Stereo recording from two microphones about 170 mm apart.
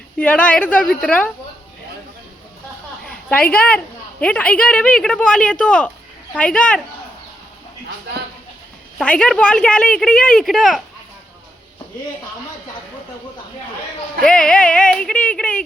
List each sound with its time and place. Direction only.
0.2 s speech: 10° left (ahead or behind)
3.0 s a sound: 5° left (ahead or behind)
4.2 s speech: 10° left (ahead or behind)
9.0 s speech: 5° left (ahead or behind)
14.3 s speech: 5° left (ahead or behind)